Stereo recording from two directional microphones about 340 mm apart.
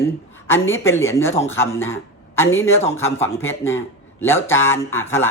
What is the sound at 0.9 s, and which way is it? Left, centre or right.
Speech, centre.